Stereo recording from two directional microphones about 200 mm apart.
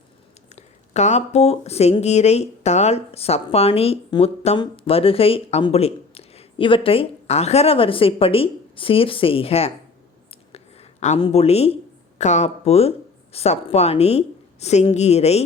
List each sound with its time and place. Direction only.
0.5 s speech: 35° left (ahead or behind)
10.5 s a sound: 35° left (ahead or behind)
13.3 s speech: 30° left (ahead or behind)